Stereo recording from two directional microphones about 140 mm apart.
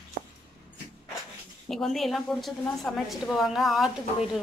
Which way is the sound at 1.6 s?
Centre (ahead or behind).